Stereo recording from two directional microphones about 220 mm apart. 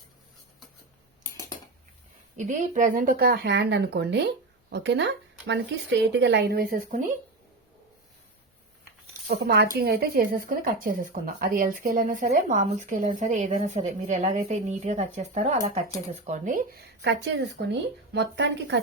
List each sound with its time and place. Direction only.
2.4 s speech: 35° right (ahead or behind)
9.2 s speech: 40° right (ahead or behind)
17.0 s speech: 50° right (ahead or behind)